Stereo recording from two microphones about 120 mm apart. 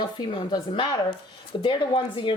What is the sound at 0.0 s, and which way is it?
A woman's voice, 40° left (ahead or behind).